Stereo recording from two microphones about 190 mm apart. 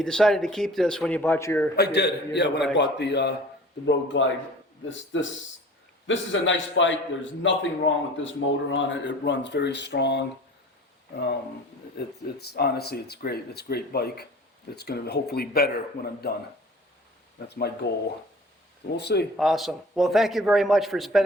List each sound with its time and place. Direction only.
0.0 s speech: 5° left (ahead or behind)
1.7 s speech: 60° left (ahead or behind)
3.8 s a man's voice: 75° left (ahead or behind)
12.0 s speech: 55° left (ahead or behind)
17.5 s speech: 60° left (ahead or behind)
18.9 s speech: 60° left (ahead or behind)
19.4 s speech: centre (ahead or behind)